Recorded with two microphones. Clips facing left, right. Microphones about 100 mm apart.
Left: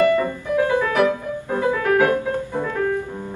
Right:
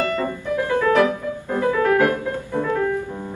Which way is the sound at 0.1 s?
15° left (ahead or behind).